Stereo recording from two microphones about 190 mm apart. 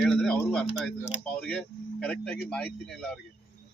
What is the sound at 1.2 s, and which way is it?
Speech, 5° left (ahead or behind).